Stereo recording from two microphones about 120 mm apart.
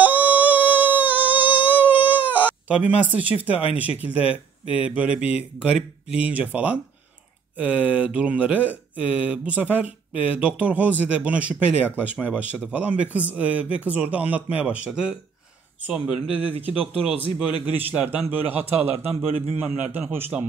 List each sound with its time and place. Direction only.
0.0 s a sound: 15° right (ahead or behind)
1.7 s speech: 15° right (ahead or behind)
17.7 s speech: 15° right (ahead or behind)
19.0 s a man's voice: 60° right (ahead or behind)
19.6 s speech: 15° right (ahead or behind)